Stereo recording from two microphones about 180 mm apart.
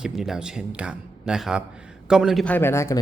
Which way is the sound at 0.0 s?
5° right (ahead or behind).